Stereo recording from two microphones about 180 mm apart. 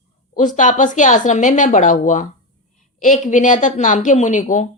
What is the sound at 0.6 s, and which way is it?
A woman's voice, 45° left (ahead or behind).